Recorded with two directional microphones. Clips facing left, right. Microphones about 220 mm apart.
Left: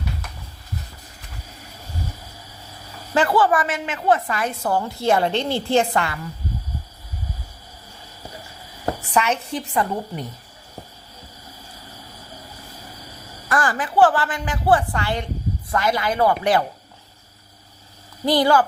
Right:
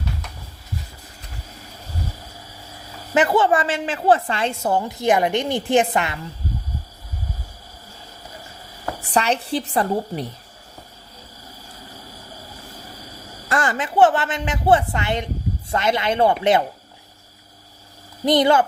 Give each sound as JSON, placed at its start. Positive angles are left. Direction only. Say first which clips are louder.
{"t": 3.2, "sound": "a woman's voice", "louder": "right 1 dB", "side_deg": -20}
{"t": 9.1, "sound": "a woman's voice", "louder": "right 3 dB", "side_deg": -35}
{"t": 13.5, "sound": "a woman's voice", "louder": "even", "side_deg": -25}
{"t": 18.3, "sound": "a woman's voice", "louder": "right 1 dB", "side_deg": -20}